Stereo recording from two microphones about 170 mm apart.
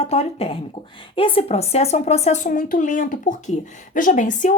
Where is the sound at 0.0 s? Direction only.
35° left (ahead or behind).